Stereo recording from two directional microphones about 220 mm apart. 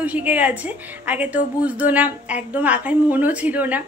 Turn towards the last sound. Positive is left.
turn(degrees=-5)  # may be behind; listen again after turning